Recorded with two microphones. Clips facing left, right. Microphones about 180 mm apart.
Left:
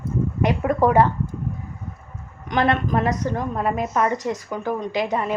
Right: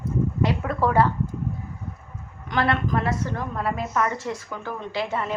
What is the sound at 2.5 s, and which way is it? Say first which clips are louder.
A woman's voice: left 3 dB; 20° left (ahead or behind).